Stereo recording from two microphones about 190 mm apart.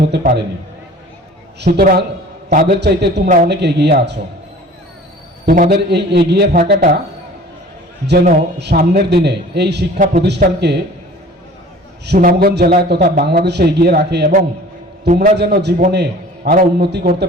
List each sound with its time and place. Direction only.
0.0 s a man's voice: 50° right (ahead or behind)
1.6 s a man's voice: 55° right (ahead or behind)
3.2 s speech: 40° right (ahead or behind)
3.5 s a man's voice: 60° right (ahead or behind)
5.5 s a man's voice: 50° right (ahead or behind)
8.4 s a man's voice: 60° right (ahead or behind)
12.0 s a man's voice: 55° right (ahead or behind)
15.0 s a man's voice: 45° right (ahead or behind)
15.4 s a man's voice: 60° right (ahead or behind)